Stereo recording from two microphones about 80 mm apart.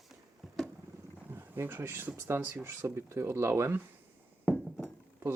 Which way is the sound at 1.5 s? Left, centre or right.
Right.